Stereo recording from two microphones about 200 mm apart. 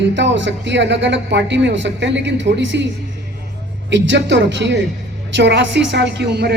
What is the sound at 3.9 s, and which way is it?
A woman's voice, 65° right (ahead or behind).